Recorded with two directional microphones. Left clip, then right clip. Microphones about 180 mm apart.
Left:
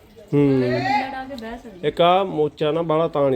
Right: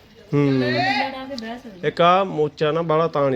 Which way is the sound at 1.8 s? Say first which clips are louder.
Even; 5° left (ahead or behind).